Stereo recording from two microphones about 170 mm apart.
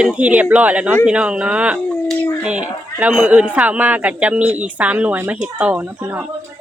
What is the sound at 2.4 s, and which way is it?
A man's voice, 5° right (ahead or behind).